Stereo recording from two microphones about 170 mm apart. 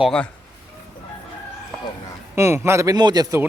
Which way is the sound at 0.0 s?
5° left (ahead or behind).